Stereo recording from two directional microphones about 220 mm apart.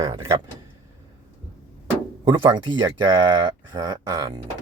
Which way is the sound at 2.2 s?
20° right (ahead or behind).